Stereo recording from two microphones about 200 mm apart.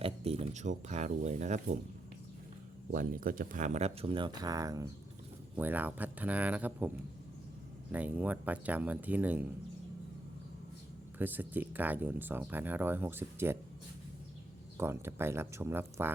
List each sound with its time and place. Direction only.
0.0 s speech: 30° right (ahead or behind)
2.9 s speech: 45° right (ahead or behind); by 6.9 s 10° right (ahead or behind)
7.9 s speech: 10° right (ahead or behind)
11.2 s speech: 10° right (ahead or behind)
14.8 s speech: 10° right (ahead or behind)